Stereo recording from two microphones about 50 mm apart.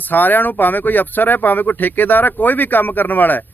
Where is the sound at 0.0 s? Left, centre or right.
Left.